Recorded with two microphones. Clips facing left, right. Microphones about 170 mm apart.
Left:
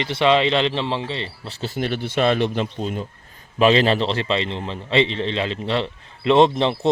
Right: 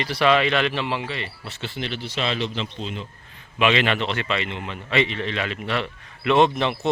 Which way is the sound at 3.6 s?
35° left (ahead or behind).